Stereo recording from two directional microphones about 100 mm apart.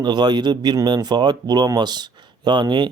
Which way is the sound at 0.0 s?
45° right (ahead or behind).